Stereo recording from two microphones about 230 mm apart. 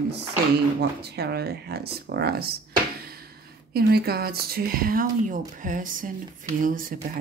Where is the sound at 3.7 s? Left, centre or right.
Right.